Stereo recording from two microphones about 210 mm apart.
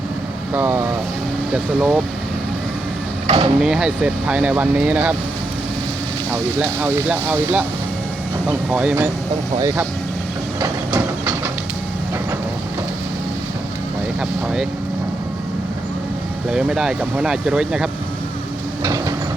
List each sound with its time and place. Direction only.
0.5 s speech: 10° right (ahead or behind)
3.2 s speech: 25° right (ahead or behind)
3.6 s speech: 5° right (ahead or behind)
6.3 s speech: 10° right (ahead or behind)
8.7 s speech: 5° right (ahead or behind)
10.6 s a sound: 10° right (ahead or behind)
14.2 s speech: 5° right (ahead or behind)
16.5 s speech: 5° right (ahead or behind)